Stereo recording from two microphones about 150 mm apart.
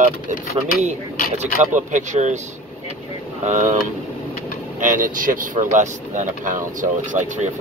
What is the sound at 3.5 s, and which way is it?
Speech, 50° right (ahead or behind).